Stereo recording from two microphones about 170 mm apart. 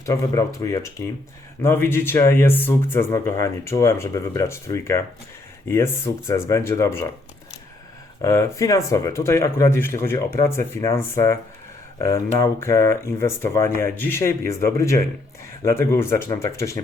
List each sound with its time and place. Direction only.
0.0 s speech: 20° left (ahead or behind)
8.2 s speech: 15° left (ahead or behind)